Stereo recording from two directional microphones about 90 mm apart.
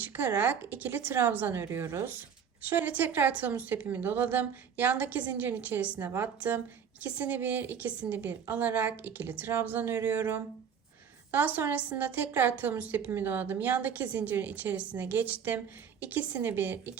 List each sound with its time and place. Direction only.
0.0 s a woman's voice: 20° right (ahead or behind)
2.6 s a woman's voice: 20° right (ahead or behind)